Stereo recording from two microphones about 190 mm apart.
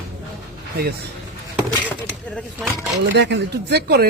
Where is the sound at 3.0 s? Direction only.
65° right (ahead or behind).